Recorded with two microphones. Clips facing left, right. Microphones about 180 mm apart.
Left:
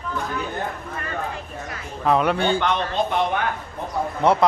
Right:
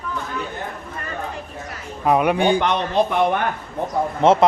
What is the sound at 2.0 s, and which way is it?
Speech, 15° right (ahead or behind).